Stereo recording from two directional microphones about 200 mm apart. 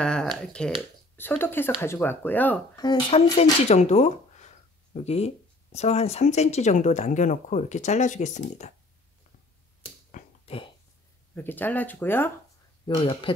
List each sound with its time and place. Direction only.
0.0 s a sound: 5° left (ahead or behind)
0.4 s speech: 5° left (ahead or behind)
2.8 s speech: 20° left (ahead or behind)
3.6 s speech: 35° left (ahead or behind)
10.1 s a sound: 30° left (ahead or behind)
11.3 s speech: 10° left (ahead or behind)
12.8 s speech: 25° left (ahead or behind)